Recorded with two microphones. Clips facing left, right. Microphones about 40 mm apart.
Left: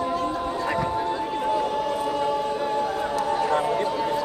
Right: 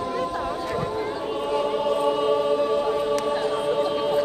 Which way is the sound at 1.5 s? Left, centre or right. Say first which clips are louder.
Right 2 dB; right.